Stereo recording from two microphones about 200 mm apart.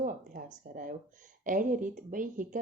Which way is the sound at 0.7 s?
45° right (ahead or behind).